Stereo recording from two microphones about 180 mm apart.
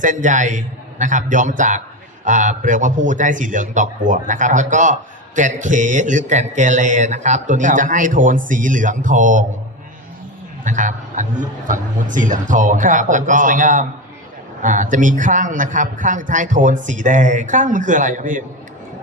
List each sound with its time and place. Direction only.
0.0 s a man's voice: 45° right (ahead or behind)
10.6 s a man's voice: 45° right (ahead or behind)